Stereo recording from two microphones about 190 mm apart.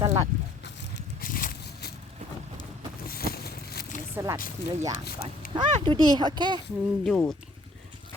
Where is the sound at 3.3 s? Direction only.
55° left (ahead or behind).